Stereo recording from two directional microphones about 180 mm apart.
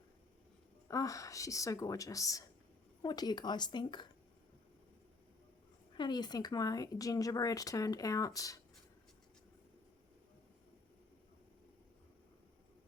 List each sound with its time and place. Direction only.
0.9 s speech: 20° left (ahead or behind)
6.0 s speech: 25° left (ahead or behind)